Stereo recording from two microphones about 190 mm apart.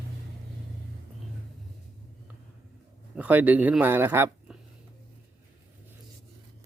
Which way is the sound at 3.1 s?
10° right (ahead or behind).